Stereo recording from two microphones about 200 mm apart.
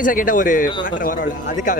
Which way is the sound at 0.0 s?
40° left (ahead or behind).